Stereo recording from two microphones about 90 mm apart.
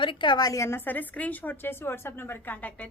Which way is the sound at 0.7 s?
20° left (ahead or behind).